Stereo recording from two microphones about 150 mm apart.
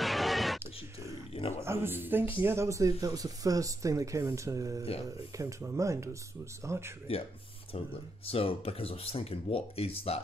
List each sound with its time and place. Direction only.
0.0 s a sound: centre (ahead or behind)
1.6 s a woman's voice: 15° right (ahead or behind)
7.7 s speech: 40° left (ahead or behind)